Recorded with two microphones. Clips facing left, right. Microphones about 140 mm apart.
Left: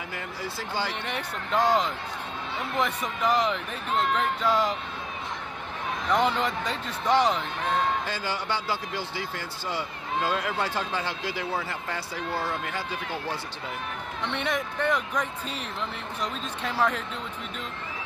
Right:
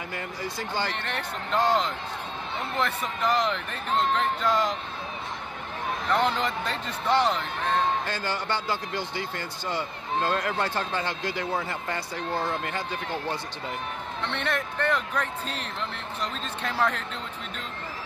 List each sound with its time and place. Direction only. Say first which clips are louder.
0.1 s speech: right 1 dB; 5° left (ahead or behind)
6.0 s speech: left 1 dB; 10° left (ahead or behind)
12.3 s speech: right 2 dB; 20° right (ahead or behind)
14.2 s speech: left 1 dB; 10° left (ahead or behind)